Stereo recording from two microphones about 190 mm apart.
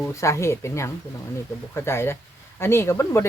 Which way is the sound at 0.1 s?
15° left (ahead or behind).